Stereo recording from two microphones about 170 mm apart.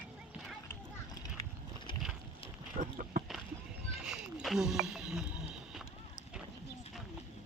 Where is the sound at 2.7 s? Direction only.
55° right (ahead or behind).